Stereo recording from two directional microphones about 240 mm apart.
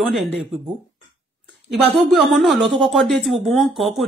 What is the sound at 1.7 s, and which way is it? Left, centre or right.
Speech, centre.